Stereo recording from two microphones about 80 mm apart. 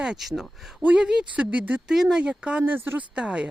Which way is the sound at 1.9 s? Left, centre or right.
Centre.